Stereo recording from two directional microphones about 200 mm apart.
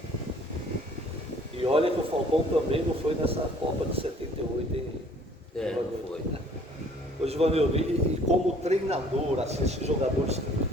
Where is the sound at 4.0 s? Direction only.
30° right (ahead or behind).